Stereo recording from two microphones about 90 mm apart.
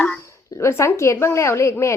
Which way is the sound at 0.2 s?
35° left (ahead or behind).